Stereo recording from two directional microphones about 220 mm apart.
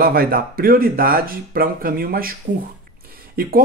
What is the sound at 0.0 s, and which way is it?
Speech, 45° right (ahead or behind).